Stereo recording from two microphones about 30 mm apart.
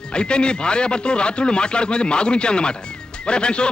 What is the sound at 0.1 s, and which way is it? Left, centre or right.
Speech, left.